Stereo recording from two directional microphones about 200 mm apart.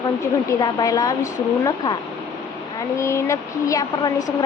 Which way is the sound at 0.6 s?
20° left (ahead or behind).